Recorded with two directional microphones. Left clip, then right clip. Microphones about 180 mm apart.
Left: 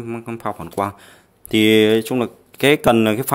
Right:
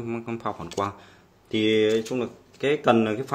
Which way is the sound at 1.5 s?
60° left (ahead or behind).